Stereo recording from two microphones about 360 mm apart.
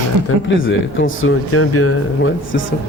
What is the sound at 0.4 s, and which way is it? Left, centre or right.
Speech, left.